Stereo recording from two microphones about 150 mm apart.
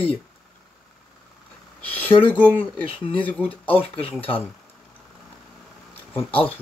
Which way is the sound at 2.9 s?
40° left (ahead or behind).